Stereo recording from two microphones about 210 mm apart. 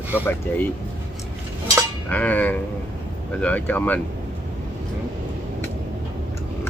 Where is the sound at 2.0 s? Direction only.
5° left (ahead or behind).